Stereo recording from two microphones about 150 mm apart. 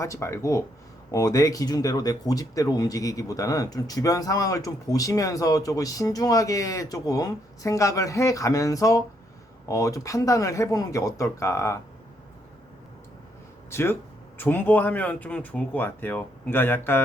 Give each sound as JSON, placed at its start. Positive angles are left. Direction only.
{"t": 0.0, "sound": "speech", "side_deg": 20}
{"t": 13.7, "sound": "speech", "side_deg": 15}